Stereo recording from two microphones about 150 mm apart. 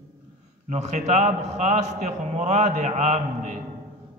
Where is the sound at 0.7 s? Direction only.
50° right (ahead or behind).